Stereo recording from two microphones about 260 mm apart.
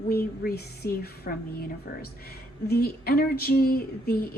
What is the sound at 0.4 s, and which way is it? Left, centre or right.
A woman's voice, left.